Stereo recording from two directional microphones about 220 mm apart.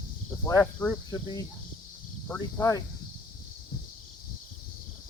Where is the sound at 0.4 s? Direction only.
5° left (ahead or behind).